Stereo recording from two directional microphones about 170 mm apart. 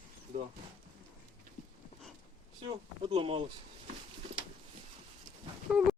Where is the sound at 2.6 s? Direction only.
35° right (ahead or behind).